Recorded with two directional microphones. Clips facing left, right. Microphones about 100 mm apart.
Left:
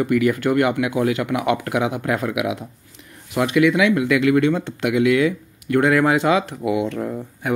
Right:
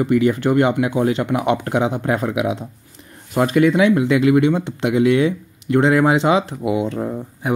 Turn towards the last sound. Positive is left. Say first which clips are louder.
# right 1 dB
turn(degrees=-20)  # may be behind; listen again after turning